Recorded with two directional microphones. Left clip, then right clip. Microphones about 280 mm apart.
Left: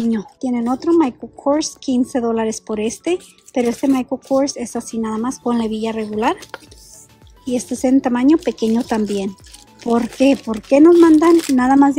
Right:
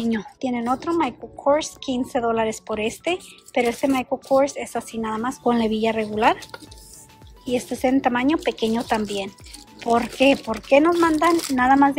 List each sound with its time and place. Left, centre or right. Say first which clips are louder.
0.1 s a woman's voice: left 4 dB; centre
7.5 s a woman's voice: left 4 dB; centre